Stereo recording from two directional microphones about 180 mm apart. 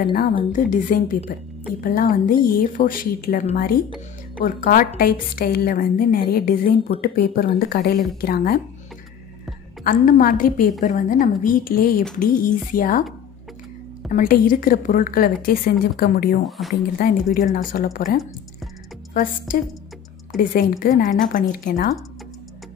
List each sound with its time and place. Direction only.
0.5 s a woman's voice: 45° left (ahead or behind)
9.8 s a woman's voice: 50° left (ahead or behind)
14.1 s a woman's voice: 50° left (ahead or behind)
16.4 s speech: centre (ahead or behind)
17.0 s a woman's voice: 50° left (ahead or behind)
20.3 s a woman's voice: centre (ahead or behind)
20.8 s a woman's voice: 45° left (ahead or behind)